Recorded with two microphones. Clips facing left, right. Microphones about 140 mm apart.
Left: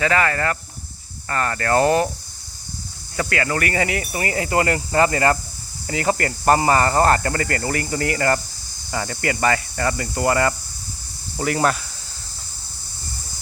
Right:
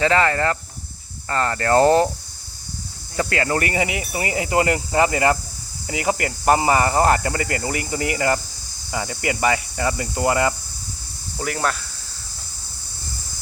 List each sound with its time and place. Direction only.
0.0 s speech: 25° right (ahead or behind)
3.2 s speech: 25° right (ahead or behind)
11.3 s speech: centre (ahead or behind)